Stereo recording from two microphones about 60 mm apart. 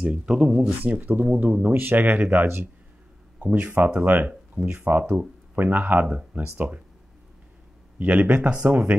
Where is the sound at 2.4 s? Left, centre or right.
Right.